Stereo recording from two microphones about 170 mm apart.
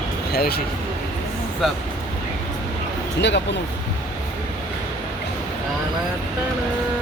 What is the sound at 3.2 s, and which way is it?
Speech, 90° left.